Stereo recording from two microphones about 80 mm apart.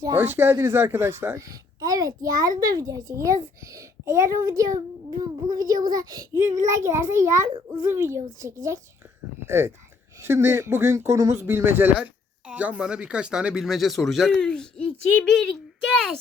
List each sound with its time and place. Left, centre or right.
0.2 s speech: right
1.4 s a child's voice: right
6.4 s speech: right; by 15.4 s centre